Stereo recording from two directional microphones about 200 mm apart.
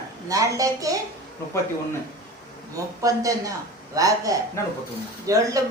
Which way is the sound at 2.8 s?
15° right (ahead or behind).